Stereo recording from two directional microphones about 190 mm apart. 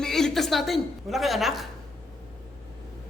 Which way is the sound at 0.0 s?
Centre (ahead or behind).